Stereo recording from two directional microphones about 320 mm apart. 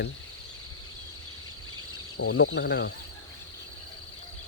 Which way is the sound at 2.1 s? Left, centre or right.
Left.